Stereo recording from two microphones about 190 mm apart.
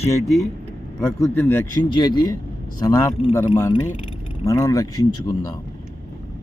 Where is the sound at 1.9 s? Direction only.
25° left (ahead or behind).